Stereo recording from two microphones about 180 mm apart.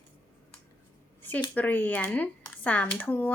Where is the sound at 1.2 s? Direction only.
10° left (ahead or behind).